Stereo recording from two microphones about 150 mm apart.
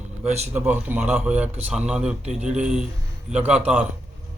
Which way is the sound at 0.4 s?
15° right (ahead or behind).